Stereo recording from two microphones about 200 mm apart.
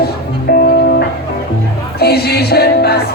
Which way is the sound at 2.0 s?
50° left (ahead or behind).